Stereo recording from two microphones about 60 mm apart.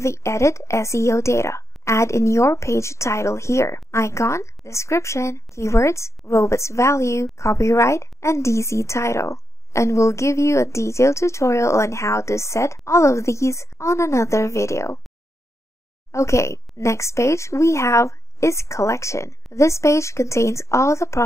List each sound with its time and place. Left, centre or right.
0.0 s a woman's voice: left
16.1 s a woman's voice: left